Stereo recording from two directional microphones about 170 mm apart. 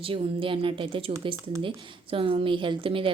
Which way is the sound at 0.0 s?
30° right (ahead or behind).